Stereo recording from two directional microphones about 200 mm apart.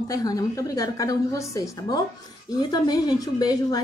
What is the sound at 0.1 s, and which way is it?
Speech, 20° left (ahead or behind).